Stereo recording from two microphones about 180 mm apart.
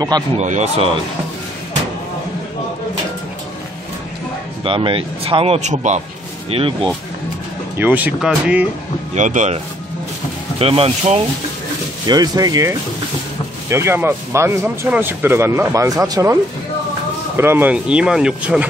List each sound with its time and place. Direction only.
0.4 s speech: 40° right (ahead or behind)
4.6 s speech: 30° right (ahead or behind)
6.5 s speech: 30° right (ahead or behind)
7.7 s a man's voice: 10° right (ahead or behind)
9.1 s speech: 45° right (ahead or behind)
10.6 s speech: 30° right (ahead or behind)
12.1 s a man's voice: 20° right (ahead or behind)
17.4 s a man's voice: 10° right (ahead or behind)